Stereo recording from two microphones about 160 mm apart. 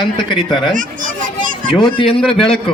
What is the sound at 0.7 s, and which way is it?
Children playing, 55° right (ahead or behind).